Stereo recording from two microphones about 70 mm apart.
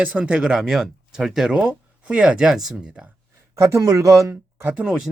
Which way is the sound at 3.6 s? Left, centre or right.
Right.